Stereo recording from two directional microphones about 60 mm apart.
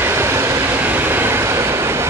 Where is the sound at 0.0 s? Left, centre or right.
Right.